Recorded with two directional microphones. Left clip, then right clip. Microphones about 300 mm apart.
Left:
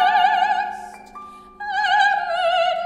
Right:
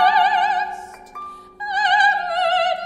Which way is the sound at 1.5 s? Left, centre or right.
Centre.